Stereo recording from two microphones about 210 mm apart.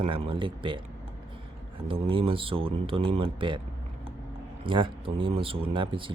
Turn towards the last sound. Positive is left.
turn(degrees=-25)  # may be behind; listen again after turning